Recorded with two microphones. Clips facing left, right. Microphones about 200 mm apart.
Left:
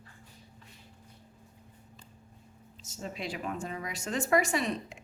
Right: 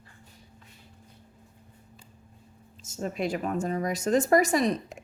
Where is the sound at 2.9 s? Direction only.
45° right (ahead or behind).